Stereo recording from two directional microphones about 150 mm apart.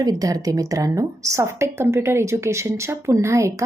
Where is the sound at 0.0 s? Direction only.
25° right (ahead or behind).